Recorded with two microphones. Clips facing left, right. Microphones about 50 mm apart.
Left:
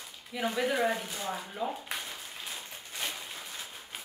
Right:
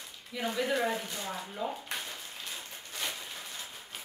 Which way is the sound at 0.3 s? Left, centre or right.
Centre.